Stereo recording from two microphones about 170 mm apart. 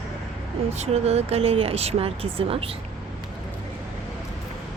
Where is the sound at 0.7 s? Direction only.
40° right (ahead or behind).